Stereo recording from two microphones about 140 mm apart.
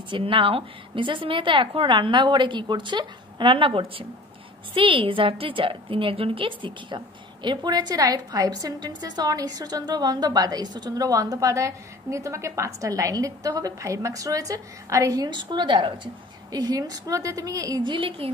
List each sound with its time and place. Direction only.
0.1 s a woman's voice: 40° right (ahead or behind)